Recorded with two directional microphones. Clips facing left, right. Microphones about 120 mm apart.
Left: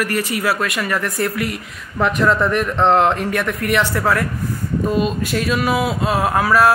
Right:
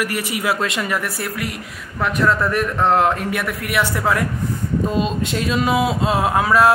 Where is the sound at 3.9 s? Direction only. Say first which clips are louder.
Left 1 dB; 15° right (ahead or behind).